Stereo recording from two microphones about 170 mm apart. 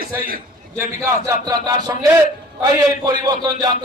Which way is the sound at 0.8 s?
15° right (ahead or behind).